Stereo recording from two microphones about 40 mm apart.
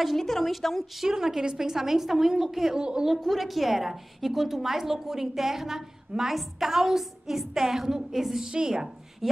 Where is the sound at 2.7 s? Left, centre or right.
Centre.